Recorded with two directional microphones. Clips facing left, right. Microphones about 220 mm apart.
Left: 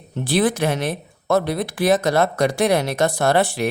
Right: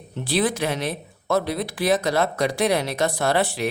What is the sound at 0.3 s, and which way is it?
Speech, 50° left (ahead or behind).